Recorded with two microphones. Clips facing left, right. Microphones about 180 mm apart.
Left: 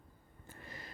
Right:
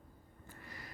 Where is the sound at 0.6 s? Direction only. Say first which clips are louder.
Left 1 dB; 25° left (ahead or behind).